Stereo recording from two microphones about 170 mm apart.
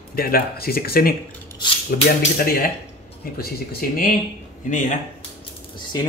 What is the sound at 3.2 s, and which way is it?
A man's voice, 60° left (ahead or behind).